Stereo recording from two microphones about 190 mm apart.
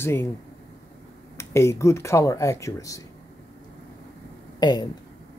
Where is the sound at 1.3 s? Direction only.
15° left (ahead or behind).